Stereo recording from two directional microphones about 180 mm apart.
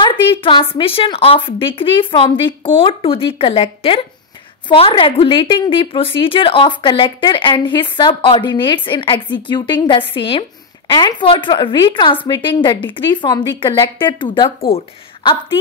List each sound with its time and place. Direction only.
0.0 s a woman's voice: 30° left (ahead or behind)